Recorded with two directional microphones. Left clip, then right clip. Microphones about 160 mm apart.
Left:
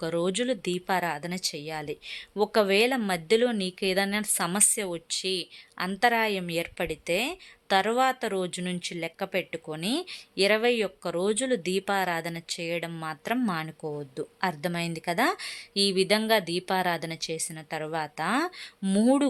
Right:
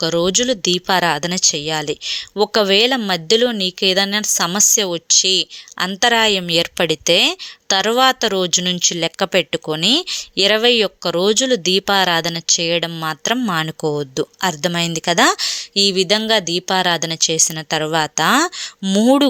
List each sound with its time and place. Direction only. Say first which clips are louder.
0.0 s speech: right 11 dB; 25° right (ahead or behind)